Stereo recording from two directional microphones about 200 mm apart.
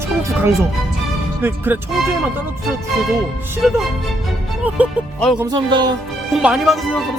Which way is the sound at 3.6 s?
5° right (ahead or behind).